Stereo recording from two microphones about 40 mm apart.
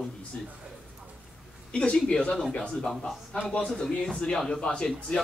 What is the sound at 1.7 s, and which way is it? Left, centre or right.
Speech, left.